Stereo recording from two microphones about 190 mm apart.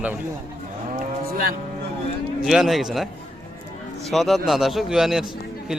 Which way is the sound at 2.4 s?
Centre (ahead or behind).